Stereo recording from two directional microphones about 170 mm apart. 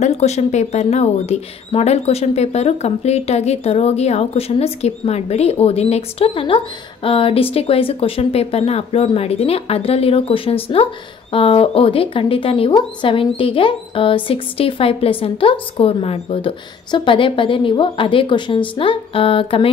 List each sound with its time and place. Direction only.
0.0 s a woman's voice: 40° left (ahead or behind)